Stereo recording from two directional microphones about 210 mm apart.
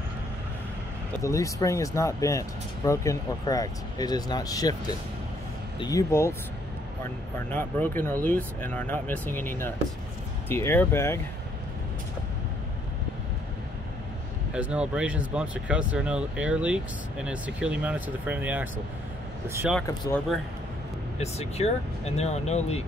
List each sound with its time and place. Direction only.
1.2 s speech: 15° left (ahead or behind)
7.5 s speech: 10° left (ahead or behind)
14.5 s speech: 5° right (ahead or behind)
21.2 s speech: 30° left (ahead or behind)